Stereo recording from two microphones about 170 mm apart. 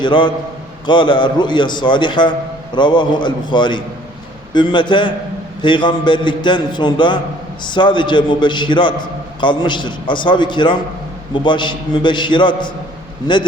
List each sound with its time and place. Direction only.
0.0 s a man's voice: 30° left (ahead or behind)